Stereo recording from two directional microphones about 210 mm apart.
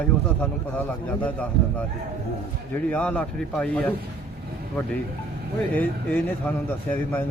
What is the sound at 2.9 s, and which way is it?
A man's voice, 5° left (ahead or behind).